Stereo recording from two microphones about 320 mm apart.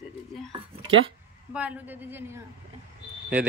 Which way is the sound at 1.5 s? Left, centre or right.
Centre.